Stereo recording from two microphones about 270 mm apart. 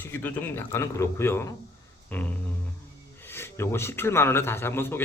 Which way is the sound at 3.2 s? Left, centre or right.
Centre.